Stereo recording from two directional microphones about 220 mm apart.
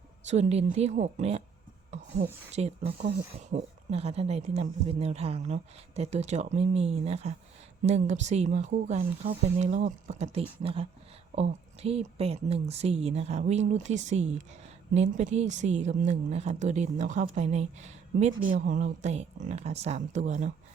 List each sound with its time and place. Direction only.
0.3 s speech: 30° right (ahead or behind)
1.9 s a sound: 30° right (ahead or behind)
2.5 s speech: 30° right (ahead or behind)